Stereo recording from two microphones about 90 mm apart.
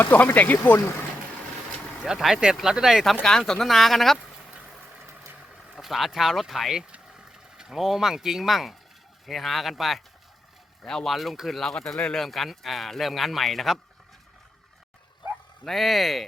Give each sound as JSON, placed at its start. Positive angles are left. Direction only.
{"t": 0.0, "sound": "speech", "side_deg": 20}
{"t": 2.0, "sound": "speech", "side_deg": -5}
{"t": 5.0, "sound": "vehicle", "side_deg": -30}
{"t": 5.7, "sound": "speech", "side_deg": 0}
{"t": 15.6, "sound": "speech", "side_deg": 0}